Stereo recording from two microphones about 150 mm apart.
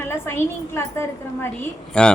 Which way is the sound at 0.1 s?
15° left (ahead or behind).